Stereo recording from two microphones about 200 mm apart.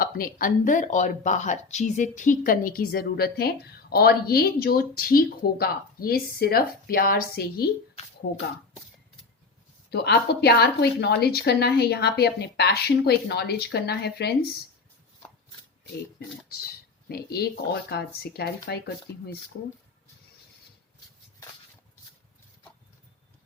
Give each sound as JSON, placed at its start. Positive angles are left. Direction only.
{"t": 0.0, "sound": "speech", "side_deg": 45}
{"t": 9.9, "sound": "speech", "side_deg": 55}
{"t": 17.1, "sound": "speech", "side_deg": 50}